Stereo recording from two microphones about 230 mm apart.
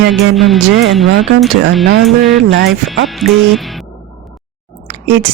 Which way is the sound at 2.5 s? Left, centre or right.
Right.